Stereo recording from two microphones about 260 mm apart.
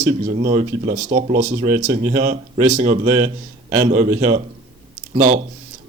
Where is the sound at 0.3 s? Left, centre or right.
Right.